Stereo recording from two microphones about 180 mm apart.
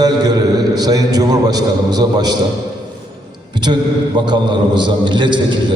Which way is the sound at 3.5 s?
25° right (ahead or behind).